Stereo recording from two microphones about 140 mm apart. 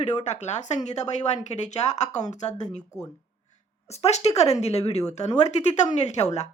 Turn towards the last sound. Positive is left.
turn(degrees=55)  # may be behind; listen again after turning